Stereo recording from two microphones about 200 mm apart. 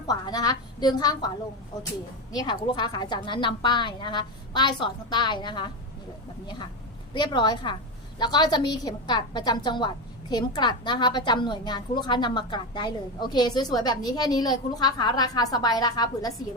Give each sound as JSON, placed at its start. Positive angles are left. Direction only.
{"t": 0.1, "sound": "a woman's voice", "side_deg": 20}
{"t": 2.3, "sound": "a woman's voice", "side_deg": 20}
{"t": 7.1, "sound": "a woman's voice", "side_deg": 25}